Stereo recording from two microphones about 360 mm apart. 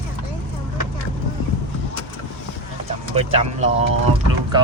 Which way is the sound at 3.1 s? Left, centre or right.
Centre.